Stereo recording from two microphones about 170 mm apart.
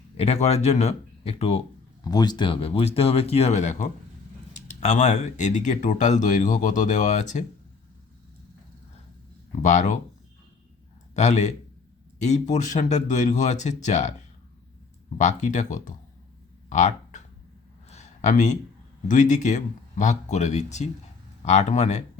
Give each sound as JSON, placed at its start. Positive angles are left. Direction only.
{"t": 0.2, "sound": "speech", "side_deg": 35}
{"t": 2.0, "sound": "speech", "side_deg": 25}
{"t": 9.6, "sound": "speech", "side_deg": 45}
{"t": 11.1, "sound": "a man's voice", "side_deg": 40}
{"t": 15.2, "sound": "speech", "side_deg": 45}
{"t": 16.6, "sound": "a sound", "side_deg": 45}
{"t": 19.0, "sound": "speech", "side_deg": 45}